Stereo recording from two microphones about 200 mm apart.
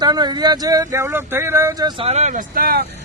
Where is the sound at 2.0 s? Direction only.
30° right (ahead or behind).